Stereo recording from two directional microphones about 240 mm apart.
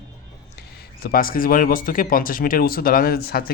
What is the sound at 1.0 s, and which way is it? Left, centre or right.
Speech, left.